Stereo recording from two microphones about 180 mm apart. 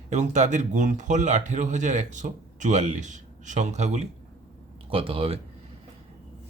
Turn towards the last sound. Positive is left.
turn(degrees=-30)  # may be behind; listen again after turning